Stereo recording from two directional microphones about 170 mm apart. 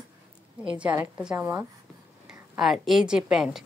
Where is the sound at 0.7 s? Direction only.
5° right (ahead or behind).